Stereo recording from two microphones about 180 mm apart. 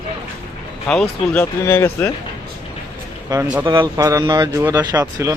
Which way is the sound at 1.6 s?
15° left (ahead or behind).